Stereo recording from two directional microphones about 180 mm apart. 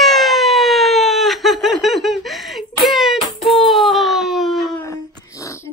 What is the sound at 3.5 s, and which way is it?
Baby cry, centre (ahead or behind).